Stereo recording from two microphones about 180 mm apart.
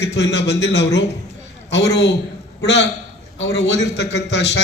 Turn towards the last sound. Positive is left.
turn(degrees=75)  # may be behind; listen again after turning